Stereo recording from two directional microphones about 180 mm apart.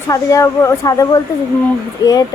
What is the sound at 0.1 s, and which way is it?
A woman's voice, 20° left (ahead or behind).